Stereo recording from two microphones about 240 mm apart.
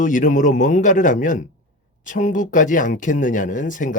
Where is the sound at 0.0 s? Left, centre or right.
Left.